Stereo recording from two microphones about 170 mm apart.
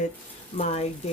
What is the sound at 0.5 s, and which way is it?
Speech, 40° left (ahead or behind).